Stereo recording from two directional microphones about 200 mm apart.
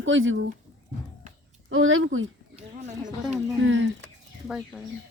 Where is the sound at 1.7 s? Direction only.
90° right.